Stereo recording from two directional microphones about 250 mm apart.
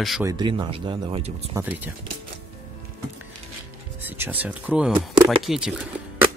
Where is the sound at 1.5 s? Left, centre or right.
Centre.